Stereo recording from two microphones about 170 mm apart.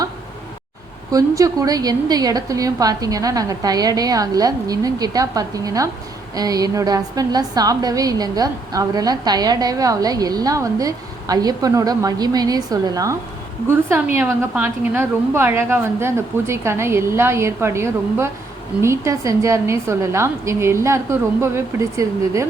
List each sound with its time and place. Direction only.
1.1 s a woman's voice: 20° right (ahead or behind)
14.2 s a woman's voice: 10° right (ahead or behind)